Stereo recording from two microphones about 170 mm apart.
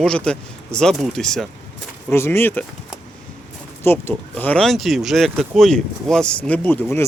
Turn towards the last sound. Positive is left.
turn(degrees=10)  # may be behind; listen again after turning